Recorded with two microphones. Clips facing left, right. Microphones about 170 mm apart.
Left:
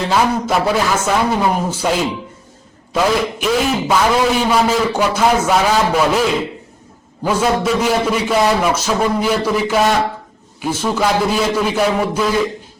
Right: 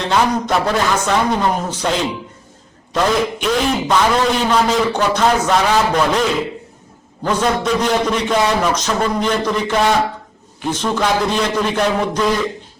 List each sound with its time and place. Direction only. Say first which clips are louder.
0.0 s a man's voice: left 1 dB; 5° left (ahead or behind)
7.3 s a man's voice: left 1 dB; 10° left (ahead or behind)